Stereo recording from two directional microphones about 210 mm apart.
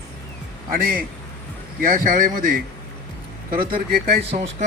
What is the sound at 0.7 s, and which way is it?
Speech, 45° right (ahead or behind).